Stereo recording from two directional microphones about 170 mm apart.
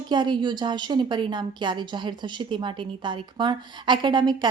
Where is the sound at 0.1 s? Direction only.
25° right (ahead or behind).